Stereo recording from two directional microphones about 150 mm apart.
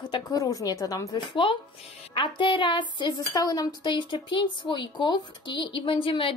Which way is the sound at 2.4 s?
35° left (ahead or behind).